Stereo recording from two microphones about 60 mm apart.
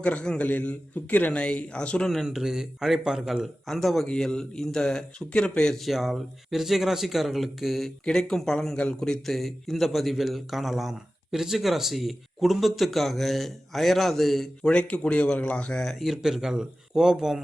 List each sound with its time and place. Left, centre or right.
0.0 s a man's voice: centre
2.2 s a man's voice: centre
5.8 s a man's voice: centre
15.8 s speech: centre